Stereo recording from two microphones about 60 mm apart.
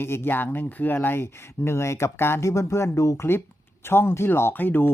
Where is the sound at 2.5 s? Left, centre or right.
Left.